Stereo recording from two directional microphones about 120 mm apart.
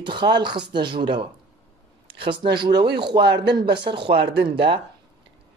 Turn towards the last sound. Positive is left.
turn(degrees=-45)  # may be behind; listen again after turning